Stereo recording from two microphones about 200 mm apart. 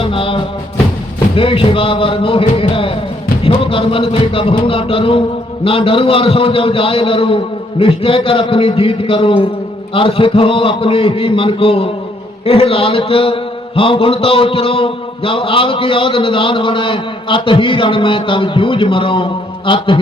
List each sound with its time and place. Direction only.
0.0 s music: 25° left (ahead or behind)
1.4 s a man's voice: 25° left (ahead or behind)